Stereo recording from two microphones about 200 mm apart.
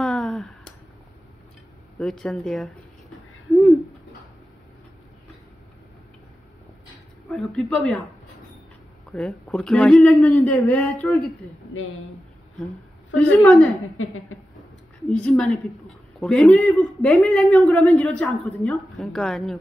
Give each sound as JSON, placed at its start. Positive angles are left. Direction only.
{"t": 0.0, "sound": "a sound", "side_deg": 5}
{"t": 2.0, "sound": "speech", "side_deg": 0}
{"t": 7.2, "sound": "speech", "side_deg": 0}
{"t": 9.1, "sound": "speech", "side_deg": 5}
{"t": 13.1, "sound": "a woman's voice", "side_deg": 10}
{"t": 13.9, "sound": "speech", "side_deg": 90}
{"t": 15.0, "sound": "speech", "side_deg": 5}